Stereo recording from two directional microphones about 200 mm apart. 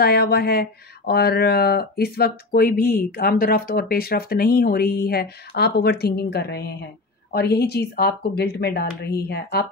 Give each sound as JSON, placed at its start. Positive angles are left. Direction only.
{"t": 0.0, "sound": "speech", "side_deg": 50}